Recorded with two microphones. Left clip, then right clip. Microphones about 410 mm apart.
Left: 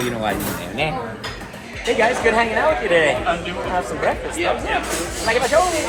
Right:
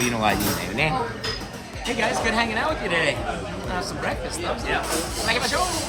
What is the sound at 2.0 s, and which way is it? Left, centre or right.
Speech, centre.